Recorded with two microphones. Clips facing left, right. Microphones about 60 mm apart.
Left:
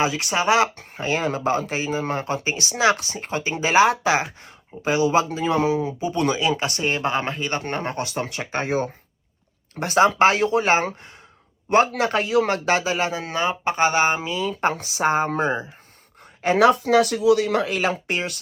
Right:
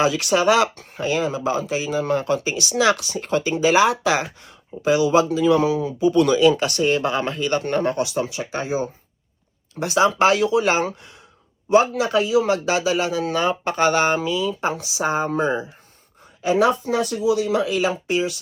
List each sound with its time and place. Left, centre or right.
0.0 s speech: left
11.7 s speech: left
16.4 s speech: left